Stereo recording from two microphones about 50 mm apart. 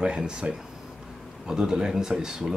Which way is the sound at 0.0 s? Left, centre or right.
Centre.